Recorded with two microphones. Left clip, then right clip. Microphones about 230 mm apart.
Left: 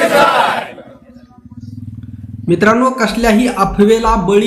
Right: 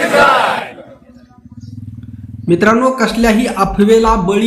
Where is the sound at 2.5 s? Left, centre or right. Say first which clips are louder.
Even; centre.